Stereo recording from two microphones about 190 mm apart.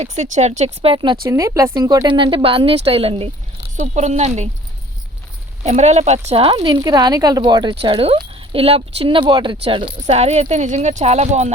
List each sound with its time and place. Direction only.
0.0 s speech: 35° right (ahead or behind)
5.6 s speech: 35° right (ahead or behind)